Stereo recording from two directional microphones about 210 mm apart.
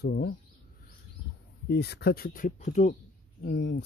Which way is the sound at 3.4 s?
50° left (ahead or behind).